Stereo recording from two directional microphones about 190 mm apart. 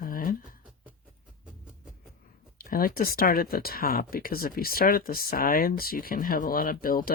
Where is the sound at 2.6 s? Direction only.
50° left (ahead or behind).